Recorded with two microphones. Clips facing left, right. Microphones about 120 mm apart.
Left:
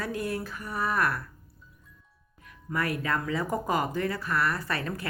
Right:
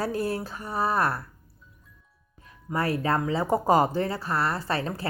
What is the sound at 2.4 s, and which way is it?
Speech, 30° right (ahead or behind).